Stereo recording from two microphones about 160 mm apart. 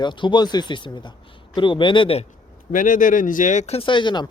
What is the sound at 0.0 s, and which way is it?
A man's voice, 30° left (ahead or behind).